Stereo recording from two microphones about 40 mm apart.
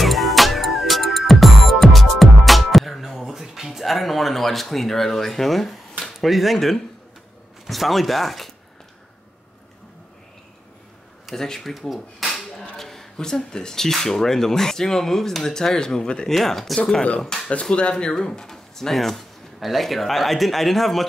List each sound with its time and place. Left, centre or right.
0.0 s music: centre
3.5 s a sound: centre
3.8 s speech: centre
11.3 s speech: centre
16.3 s speech: centre
17.5 s speech: left; by 21.1 s centre